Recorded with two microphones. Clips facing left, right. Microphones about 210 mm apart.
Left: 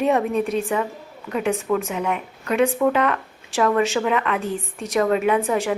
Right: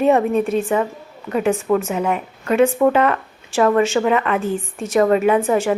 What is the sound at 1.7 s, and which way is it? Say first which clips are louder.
Speech: right 4 dB; 45° right (ahead or behind).